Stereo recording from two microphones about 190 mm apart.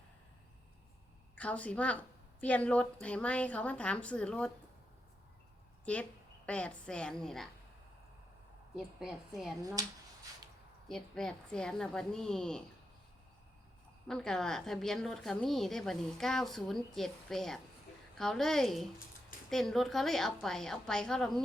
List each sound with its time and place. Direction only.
1.4 s a woman's voice: 5° left (ahead or behind)
5.8 s a woman's voice: 5° left (ahead or behind)
8.7 s a woman's voice: centre (ahead or behind)
9.6 s speech: 20° right (ahead or behind)
10.8 s a woman's voice: centre (ahead or behind)
14.1 s a woman's voice: 5° left (ahead or behind)